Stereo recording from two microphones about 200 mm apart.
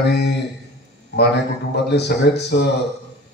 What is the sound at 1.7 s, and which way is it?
A man's voice, 60° left (ahead or behind).